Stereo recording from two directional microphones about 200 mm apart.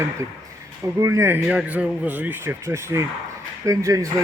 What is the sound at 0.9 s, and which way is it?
A man's voice, 15° right (ahead or behind).